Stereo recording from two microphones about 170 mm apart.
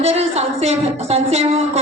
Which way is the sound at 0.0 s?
40° right (ahead or behind).